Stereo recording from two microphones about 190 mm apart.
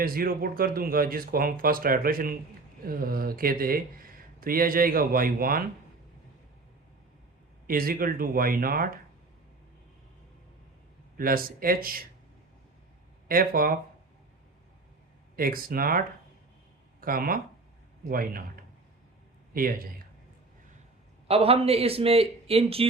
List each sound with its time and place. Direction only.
0.0 s speech: 50° right (ahead or behind)
7.7 s speech: 50° right (ahead or behind)
11.2 s speech: 50° right (ahead or behind)
13.2 s speech: 50° right (ahead or behind)
15.4 s speech: 50° right (ahead or behind)
19.5 s speech: 50° right (ahead or behind)
21.2 s a man's voice: 30° right (ahead or behind)